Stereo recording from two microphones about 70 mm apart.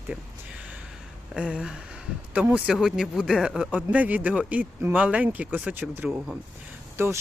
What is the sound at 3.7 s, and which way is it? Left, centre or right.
Speech, centre.